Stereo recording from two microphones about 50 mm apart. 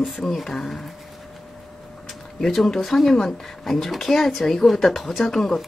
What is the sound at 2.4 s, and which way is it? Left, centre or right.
Speech, centre.